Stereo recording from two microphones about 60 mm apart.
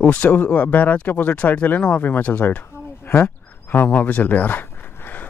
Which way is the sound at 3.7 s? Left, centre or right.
Left.